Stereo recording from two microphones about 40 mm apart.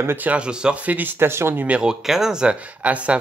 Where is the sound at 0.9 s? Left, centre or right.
Right.